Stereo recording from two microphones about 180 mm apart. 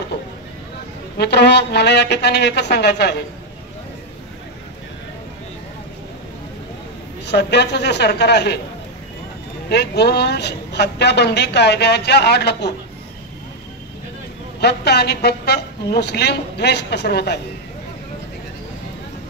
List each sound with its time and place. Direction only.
1.1 s a man's voice: 65° left (ahead or behind)
7.2 s a man's voice: 70° left (ahead or behind)
9.7 s a man's voice: 65° left (ahead or behind)
14.6 s a man's voice: 65° left (ahead or behind)